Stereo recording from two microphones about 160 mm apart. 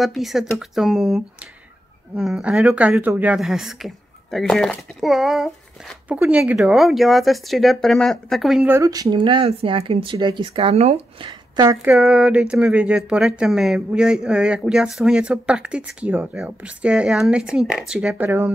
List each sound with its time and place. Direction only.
0.0 s speech: centre (ahead or behind)
8.6 s speech: 20° right (ahead or behind); by 11.2 s 40° right (ahead or behind)
11.2 s a woman's voice: 25° right (ahead or behind)
11.8 s speech: 5° right (ahead or behind)